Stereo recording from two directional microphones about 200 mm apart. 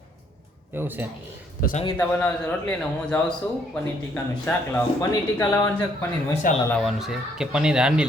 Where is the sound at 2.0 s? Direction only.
10° left (ahead or behind).